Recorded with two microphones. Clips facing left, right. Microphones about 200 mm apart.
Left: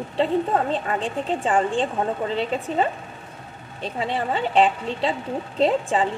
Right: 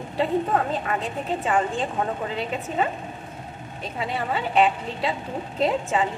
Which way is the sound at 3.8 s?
30° left (ahead or behind).